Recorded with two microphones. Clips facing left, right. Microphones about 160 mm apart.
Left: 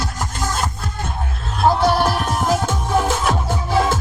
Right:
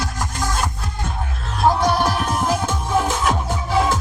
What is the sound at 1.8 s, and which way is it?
Music, 15° right (ahead or behind).